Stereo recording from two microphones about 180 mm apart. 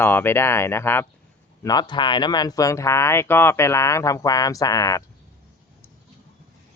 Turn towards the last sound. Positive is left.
turn(degrees=20)  # may be behind; listen again after turning